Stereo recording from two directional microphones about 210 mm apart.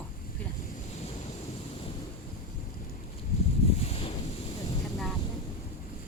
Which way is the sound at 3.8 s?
30° left (ahead or behind).